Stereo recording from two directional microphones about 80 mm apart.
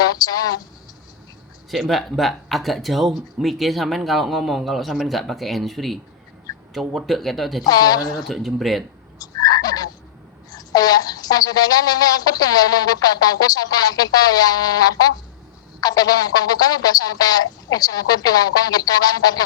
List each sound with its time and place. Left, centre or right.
0.0 s a sound: left
1.7 s speech: centre
7.6 s a woman's voice: left
8.3 s speech: centre
9.1 s a sound: left
10.5 s a woman's voice: left